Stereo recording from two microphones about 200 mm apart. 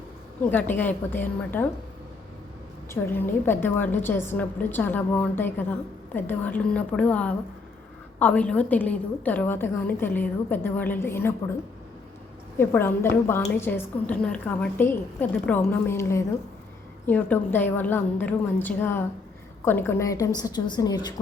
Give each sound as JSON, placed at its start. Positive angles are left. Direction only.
{"t": 0.5, "sound": "a woman's voice", "side_deg": 10}
{"t": 2.9, "sound": "a woman's voice", "side_deg": 10}
{"t": 12.5, "sound": "a woman's voice", "side_deg": 10}